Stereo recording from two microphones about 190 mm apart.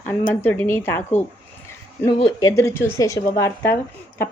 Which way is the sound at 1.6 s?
15° left (ahead or behind).